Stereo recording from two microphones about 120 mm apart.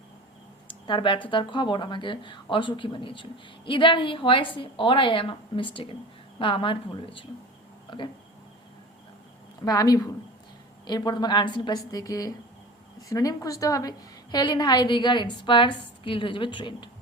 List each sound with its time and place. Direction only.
0.9 s a woman's voice: 45° left (ahead or behind)
7.9 s a sound: 40° left (ahead or behind)
9.6 s a woman's voice: 30° left (ahead or behind)